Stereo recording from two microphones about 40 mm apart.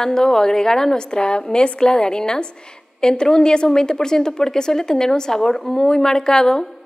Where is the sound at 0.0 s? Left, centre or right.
Centre.